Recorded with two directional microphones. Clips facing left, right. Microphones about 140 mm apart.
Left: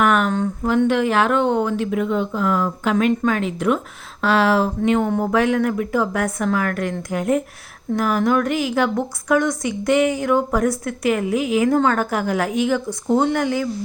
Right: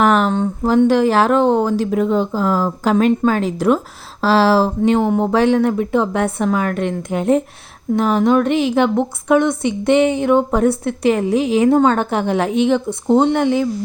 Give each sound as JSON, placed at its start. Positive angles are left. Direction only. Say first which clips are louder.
{"t": 0.0, "sound": "a woman's voice", "louder": "right 3 dB", "side_deg": -35}